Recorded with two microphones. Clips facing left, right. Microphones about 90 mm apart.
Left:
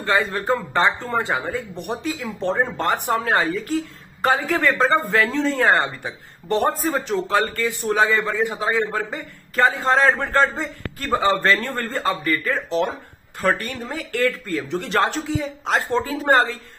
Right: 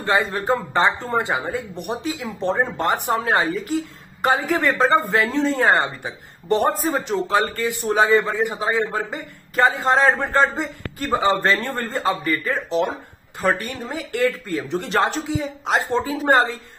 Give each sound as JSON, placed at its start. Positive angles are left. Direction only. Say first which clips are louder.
{"t": 0.0, "sound": "a man's voice", "louder": "even", "side_deg": -15}
{"t": 11.6, "sound": "speech", "louder": "right 1 dB", "side_deg": -15}